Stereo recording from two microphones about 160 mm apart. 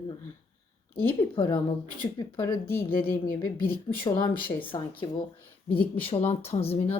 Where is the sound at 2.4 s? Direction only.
15° left (ahead or behind).